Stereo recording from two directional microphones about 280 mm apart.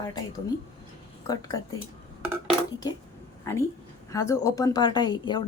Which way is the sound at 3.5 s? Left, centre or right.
Centre.